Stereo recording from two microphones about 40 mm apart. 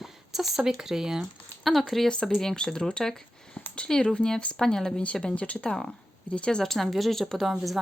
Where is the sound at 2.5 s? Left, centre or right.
Left.